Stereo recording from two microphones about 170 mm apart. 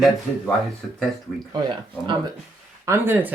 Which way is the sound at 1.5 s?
25° right (ahead or behind).